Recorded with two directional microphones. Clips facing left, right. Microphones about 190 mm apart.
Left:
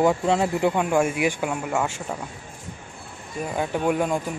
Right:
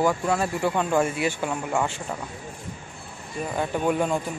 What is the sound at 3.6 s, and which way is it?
Speech, 10° left (ahead or behind).